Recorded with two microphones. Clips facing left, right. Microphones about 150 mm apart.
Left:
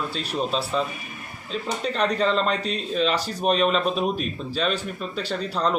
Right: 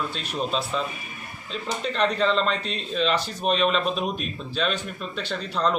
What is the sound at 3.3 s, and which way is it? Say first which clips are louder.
Speech: left 2 dB; 40° left (ahead or behind).